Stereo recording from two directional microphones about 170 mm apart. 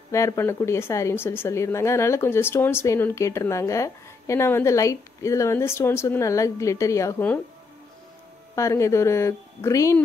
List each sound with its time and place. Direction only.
0.1 s speech: 15° left (ahead or behind)
8.5 s speech: 15° left (ahead or behind)